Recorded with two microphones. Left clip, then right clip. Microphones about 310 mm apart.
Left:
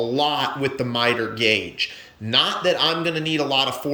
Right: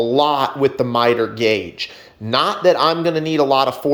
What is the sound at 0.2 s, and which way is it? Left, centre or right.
Speech, centre.